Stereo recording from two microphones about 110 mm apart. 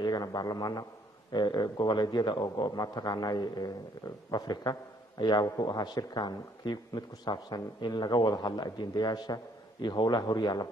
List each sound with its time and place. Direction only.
0.0 s a man's voice: 40° left (ahead or behind)